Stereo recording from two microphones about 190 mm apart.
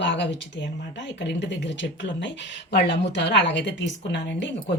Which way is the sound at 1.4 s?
70° left (ahead or behind).